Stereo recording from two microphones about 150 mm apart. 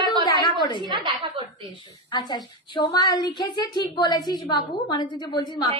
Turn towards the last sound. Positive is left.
turn(degrees=30)  # may be behind; listen again after turning